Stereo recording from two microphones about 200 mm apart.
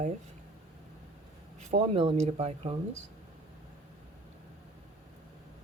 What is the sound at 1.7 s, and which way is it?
Speech, 30° right (ahead or behind).